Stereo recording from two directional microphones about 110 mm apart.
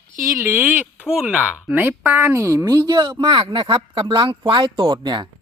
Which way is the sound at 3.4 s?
55° right (ahead or behind).